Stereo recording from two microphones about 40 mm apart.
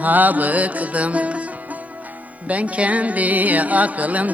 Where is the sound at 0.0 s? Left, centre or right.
Right.